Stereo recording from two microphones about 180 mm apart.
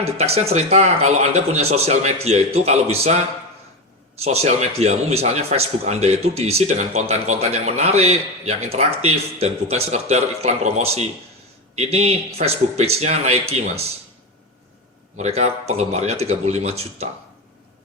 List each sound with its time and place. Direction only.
0.2 s a man's voice: 35° right (ahead or behind)
15.1 s a man's voice: 40° right (ahead or behind)